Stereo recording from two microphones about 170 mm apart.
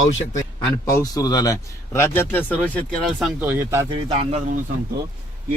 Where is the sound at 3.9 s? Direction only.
35° right (ahead or behind).